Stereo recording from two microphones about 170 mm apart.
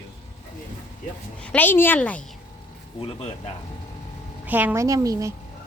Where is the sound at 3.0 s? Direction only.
35° left (ahead or behind).